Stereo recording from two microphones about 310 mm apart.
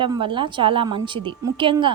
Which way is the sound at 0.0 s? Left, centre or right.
Centre.